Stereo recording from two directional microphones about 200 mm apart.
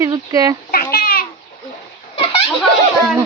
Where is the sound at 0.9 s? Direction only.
50° left (ahead or behind).